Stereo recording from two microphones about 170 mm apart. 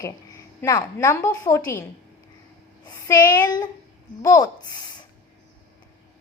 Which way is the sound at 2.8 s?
20° left (ahead or behind).